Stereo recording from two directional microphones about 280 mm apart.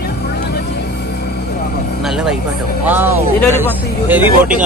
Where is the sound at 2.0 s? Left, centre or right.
Centre.